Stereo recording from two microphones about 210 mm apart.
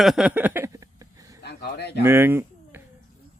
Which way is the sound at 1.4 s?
50° left (ahead or behind).